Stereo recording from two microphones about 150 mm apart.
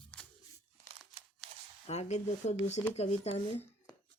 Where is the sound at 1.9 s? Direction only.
50° left (ahead or behind).